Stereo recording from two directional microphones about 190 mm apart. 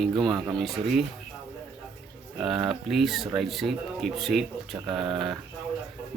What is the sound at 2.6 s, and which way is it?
Speech, centre (ahead or behind).